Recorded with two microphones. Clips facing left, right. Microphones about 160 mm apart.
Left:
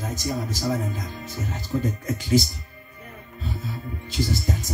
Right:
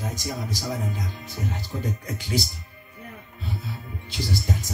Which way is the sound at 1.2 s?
45° left (ahead or behind).